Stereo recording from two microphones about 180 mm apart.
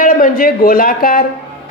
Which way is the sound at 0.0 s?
50° left (ahead or behind).